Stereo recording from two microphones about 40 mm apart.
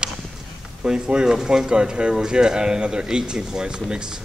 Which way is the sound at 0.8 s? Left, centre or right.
Right.